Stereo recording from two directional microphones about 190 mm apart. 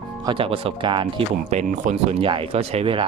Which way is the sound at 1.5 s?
40° right (ahead or behind).